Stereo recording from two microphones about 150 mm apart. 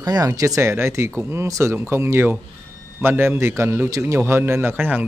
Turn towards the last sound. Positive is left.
turn(degrees=-15)  # may be behind; listen again after turning